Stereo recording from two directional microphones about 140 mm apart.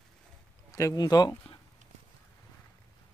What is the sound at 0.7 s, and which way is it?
Speech, 25° left (ahead or behind).